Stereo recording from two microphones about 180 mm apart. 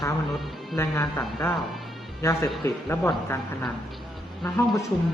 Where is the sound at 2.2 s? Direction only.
15° left (ahead or behind).